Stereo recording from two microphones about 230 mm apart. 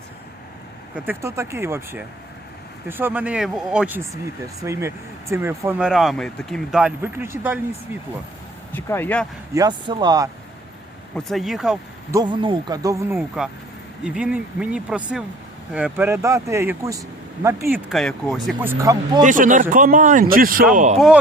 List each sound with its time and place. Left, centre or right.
0.9 s speech: centre
8.7 s speech: centre
9.6 s speech: centre
11.1 s speech: centre
12.1 s speech: centre
18.4 s speech: centre
19.2 s speech: right